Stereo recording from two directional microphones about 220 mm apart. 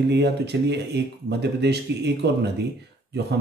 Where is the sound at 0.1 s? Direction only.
50° right (ahead or behind).